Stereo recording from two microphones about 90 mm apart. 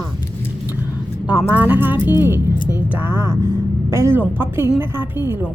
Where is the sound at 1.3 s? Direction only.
15° right (ahead or behind).